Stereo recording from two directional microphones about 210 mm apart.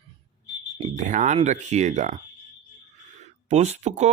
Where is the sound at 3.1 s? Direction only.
35° right (ahead or behind).